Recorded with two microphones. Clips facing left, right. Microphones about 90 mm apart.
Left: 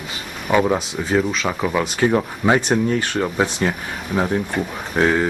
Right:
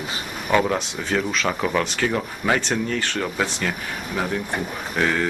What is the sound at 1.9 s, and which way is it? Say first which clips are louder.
Speech: left 6 dB; 25° left (ahead or behind).